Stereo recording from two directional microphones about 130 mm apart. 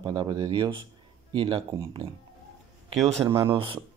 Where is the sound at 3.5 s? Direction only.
45° right (ahead or behind).